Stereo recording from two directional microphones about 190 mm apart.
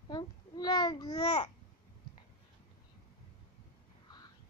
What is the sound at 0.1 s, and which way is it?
Babbling, 20° left (ahead or behind).